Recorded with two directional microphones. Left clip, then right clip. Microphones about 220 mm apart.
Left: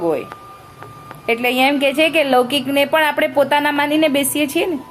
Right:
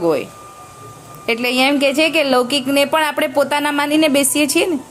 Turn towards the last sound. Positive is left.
turn(degrees=-25)  # may be behind; listen again after turning